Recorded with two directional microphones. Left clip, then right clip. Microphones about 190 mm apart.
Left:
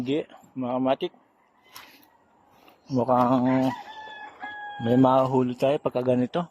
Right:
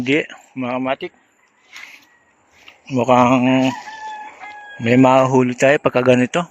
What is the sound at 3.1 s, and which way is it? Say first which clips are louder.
Speech: right 9 dB; 25° right (ahead or behind).